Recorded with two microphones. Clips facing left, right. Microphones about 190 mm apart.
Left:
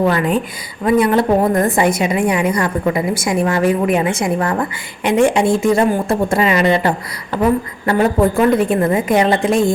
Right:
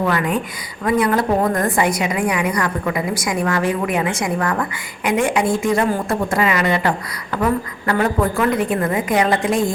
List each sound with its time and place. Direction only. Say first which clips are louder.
0.0 s a woman's voice: left 4 dB; 30° left (ahead or behind)